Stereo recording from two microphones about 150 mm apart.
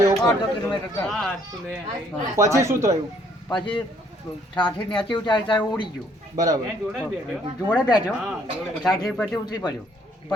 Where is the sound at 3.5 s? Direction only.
35° left (ahead or behind).